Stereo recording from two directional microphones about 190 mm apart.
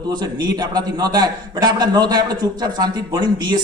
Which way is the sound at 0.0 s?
20° right (ahead or behind).